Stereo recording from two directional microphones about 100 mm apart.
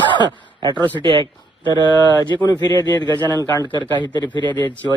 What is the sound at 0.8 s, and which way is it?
Speech, 15° left (ahead or behind).